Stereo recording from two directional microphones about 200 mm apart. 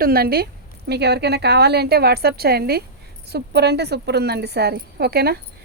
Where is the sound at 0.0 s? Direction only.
50° right (ahead or behind).